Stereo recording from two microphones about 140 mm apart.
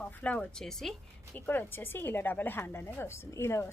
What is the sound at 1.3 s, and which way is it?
A woman's voice, 15° left (ahead or behind).